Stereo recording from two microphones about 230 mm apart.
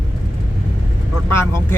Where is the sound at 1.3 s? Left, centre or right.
Centre.